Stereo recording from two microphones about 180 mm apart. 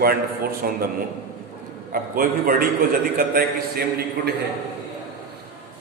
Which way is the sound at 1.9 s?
55° right (ahead or behind).